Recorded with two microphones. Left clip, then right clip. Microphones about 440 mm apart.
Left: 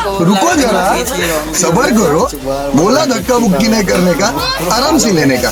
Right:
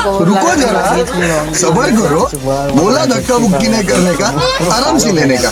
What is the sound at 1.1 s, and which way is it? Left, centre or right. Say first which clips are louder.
Speech: right 1 dB; left.